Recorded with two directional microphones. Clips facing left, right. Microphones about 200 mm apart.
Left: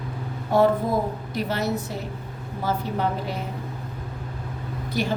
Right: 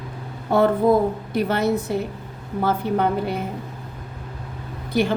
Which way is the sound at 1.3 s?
55° right (ahead or behind).